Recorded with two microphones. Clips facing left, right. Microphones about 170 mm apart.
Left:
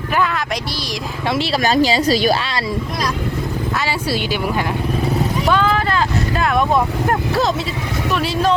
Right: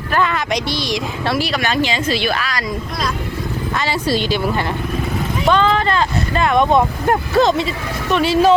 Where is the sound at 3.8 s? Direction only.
10° left (ahead or behind).